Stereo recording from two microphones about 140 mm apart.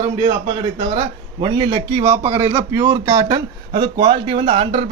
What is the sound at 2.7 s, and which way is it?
Speech, 25° right (ahead or behind).